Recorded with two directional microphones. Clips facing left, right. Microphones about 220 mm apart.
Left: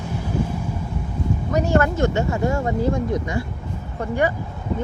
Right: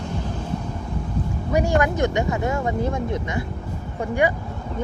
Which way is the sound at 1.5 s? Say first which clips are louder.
Left 1 dB; 10° right (ahead or behind).